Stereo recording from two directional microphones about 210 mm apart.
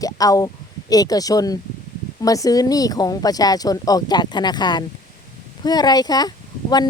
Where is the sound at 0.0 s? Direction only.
15° left (ahead or behind).